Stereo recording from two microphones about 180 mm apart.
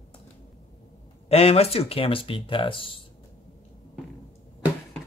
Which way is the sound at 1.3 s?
35° left (ahead or behind).